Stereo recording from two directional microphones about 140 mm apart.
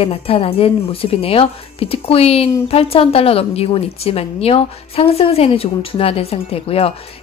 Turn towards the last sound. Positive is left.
turn(degrees=45)  # may be behind; listen again after turning